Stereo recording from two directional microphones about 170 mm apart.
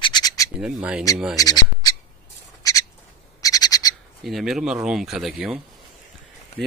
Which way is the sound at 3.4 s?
20° left (ahead or behind).